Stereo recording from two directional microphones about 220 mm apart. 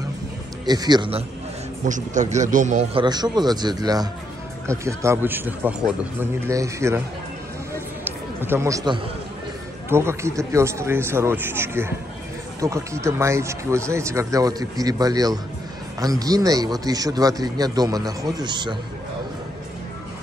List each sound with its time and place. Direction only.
0.7 s speech: 20° right (ahead or behind)
1.9 s speech: 35° right (ahead or behind); by 7.0 s 15° right (ahead or behind)
8.0 s a sound: 10° right (ahead or behind)
9.8 s speech: 10° right (ahead or behind)